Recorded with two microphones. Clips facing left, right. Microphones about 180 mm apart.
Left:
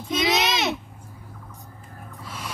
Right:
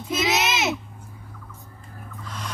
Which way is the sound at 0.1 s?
5° right (ahead or behind).